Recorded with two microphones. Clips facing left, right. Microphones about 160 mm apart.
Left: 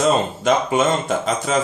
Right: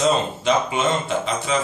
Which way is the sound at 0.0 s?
45° left (ahead or behind).